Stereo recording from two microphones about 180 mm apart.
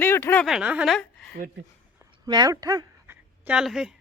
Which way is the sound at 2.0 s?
20° right (ahead or behind).